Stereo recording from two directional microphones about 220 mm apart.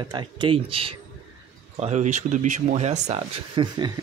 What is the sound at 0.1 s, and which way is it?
Speech, 20° right (ahead or behind).